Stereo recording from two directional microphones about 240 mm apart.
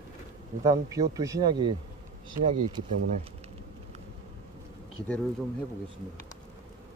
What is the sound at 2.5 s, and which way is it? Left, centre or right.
Speech, right.